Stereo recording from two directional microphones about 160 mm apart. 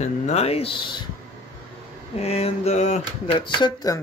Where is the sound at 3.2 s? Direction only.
30° left (ahead or behind).